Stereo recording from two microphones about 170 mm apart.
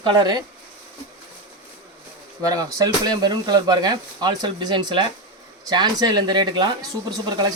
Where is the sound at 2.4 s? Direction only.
20° right (ahead or behind).